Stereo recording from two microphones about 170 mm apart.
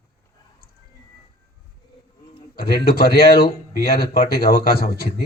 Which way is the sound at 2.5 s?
65° left (ahead or behind).